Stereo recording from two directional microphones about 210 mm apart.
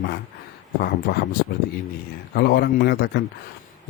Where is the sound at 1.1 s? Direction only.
45° left (ahead or behind).